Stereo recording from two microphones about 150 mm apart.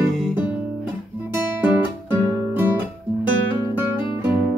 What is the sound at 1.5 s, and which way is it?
Music, 10° right (ahead or behind).